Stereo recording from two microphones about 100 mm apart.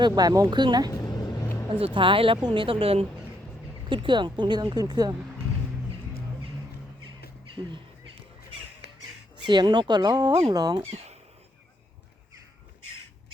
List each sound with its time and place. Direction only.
0.0 s speech: 40° right (ahead or behind)
0.9 s a sound: 40° left (ahead or behind)
1.7 s speech: 55° right (ahead or behind)
3.8 s speech: 55° right (ahead or behind)
7.6 s speech: 55° right (ahead or behind)
9.4 s speech: 50° right (ahead or behind)
10.8 s speech: 90° right